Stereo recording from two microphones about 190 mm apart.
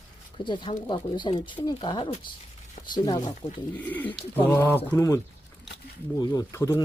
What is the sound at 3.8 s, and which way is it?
Speech, 10° left (ahead or behind).